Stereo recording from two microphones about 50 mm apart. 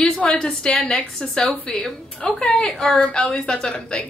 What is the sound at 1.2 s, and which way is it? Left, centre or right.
Speech, left.